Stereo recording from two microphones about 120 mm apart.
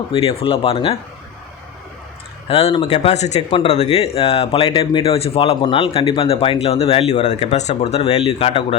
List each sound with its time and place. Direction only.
0.1 s speech: 55° left (ahead or behind)
2.5 s speech: 55° left (ahead or behind)